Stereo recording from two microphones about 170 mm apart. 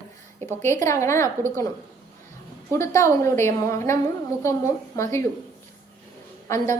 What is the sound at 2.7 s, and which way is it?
A woman's voice, 15° left (ahead or behind).